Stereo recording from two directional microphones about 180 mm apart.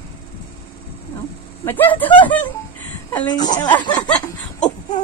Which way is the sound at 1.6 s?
10° left (ahead or behind).